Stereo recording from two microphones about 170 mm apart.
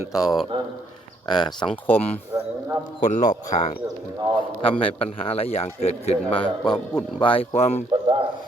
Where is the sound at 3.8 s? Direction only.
25° right (ahead or behind).